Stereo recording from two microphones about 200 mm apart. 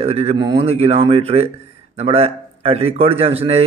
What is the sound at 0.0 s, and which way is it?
A man's voice, 30° right (ahead or behind).